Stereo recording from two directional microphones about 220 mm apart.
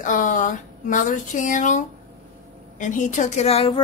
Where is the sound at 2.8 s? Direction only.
35° left (ahead or behind).